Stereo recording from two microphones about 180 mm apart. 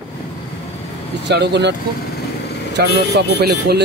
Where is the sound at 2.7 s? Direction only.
65° right (ahead or behind).